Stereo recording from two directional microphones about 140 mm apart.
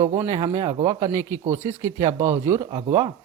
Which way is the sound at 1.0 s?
20° right (ahead or behind).